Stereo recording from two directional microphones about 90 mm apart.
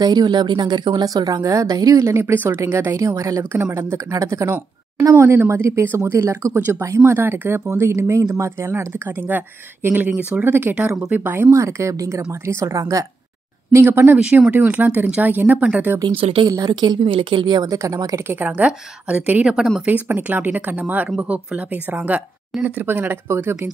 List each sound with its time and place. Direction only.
0.0 s a woman's voice: 50° right (ahead or behind)
2.0 s speech: 30° right (ahead or behind)
10.0 s speech: 10° right (ahead or behind)
10.4 s speech: 25° right (ahead or behind)
11.5 s speech: 35° right (ahead or behind)
14.1 s speech: 15° right (ahead or behind)
16.2 s speech: 90° right
16.4 s a woman's voice: 45° right (ahead or behind)
17.0 s speech: 70° right (ahead or behind)
17.6 s speech: 40° right (ahead or behind)
18.3 s speech: 15° right (ahead or behind)